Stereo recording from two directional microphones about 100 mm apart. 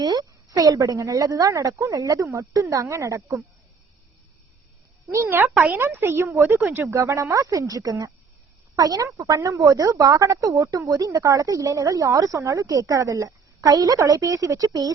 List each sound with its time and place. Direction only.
0.0 s speech: 45° right (ahead or behind)
5.1 s a woman's voice: 20° right (ahead or behind); by 14.9 s 40° right (ahead or behind)